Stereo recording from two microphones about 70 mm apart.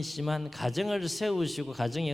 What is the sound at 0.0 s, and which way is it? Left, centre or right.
A man's voice, centre.